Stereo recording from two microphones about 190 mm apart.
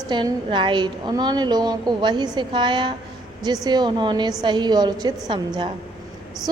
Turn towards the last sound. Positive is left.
turn(degrees=-25)  # may be behind; listen again after turning